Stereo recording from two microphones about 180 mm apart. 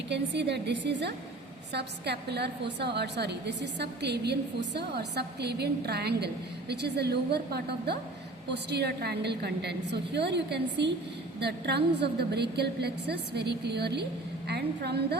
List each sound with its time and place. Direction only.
0.1 s a woman's voice: 70° right (ahead or behind)